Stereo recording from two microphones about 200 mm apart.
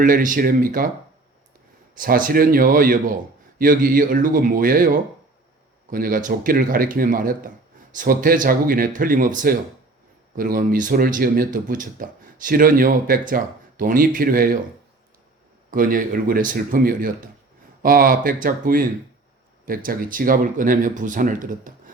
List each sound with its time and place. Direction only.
0.0 s speech: 40° right (ahead or behind)
2.0 s speech: 45° right (ahead or behind)
15.7 s speech: 45° right (ahead or behind)